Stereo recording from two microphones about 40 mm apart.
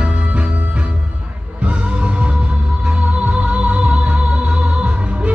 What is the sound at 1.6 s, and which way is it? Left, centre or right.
Music, right.